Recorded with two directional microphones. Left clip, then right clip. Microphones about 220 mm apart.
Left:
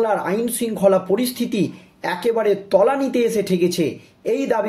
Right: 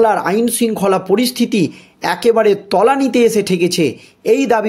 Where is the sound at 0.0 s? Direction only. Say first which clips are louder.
Right 7 dB; 45° right (ahead or behind).